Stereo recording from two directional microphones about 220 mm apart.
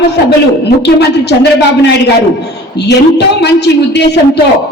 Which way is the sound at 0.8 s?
50° left (ahead or behind).